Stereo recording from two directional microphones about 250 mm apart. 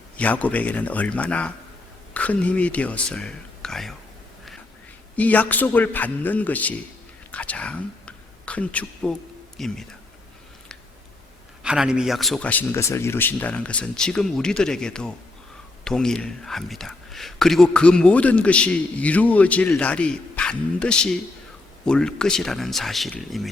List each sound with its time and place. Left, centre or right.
0.2 s speech: centre
5.1 s a man's voice: centre
11.6 s speech: centre